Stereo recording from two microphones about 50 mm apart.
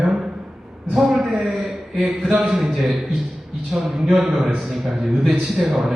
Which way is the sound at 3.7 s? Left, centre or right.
Centre.